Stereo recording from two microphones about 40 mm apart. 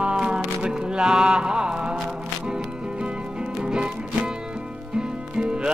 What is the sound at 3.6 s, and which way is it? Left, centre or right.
Music, right.